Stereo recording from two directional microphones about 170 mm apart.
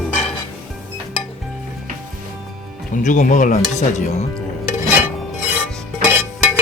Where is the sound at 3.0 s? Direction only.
45° left (ahead or behind).